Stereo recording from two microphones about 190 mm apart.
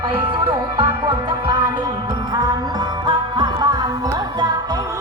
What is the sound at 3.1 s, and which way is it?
Music, 25° right (ahead or behind).